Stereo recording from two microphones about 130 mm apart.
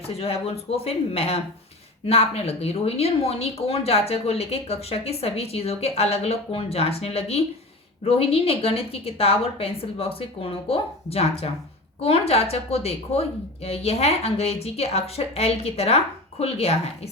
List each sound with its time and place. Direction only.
0.1 s speech: 50° left (ahead or behind)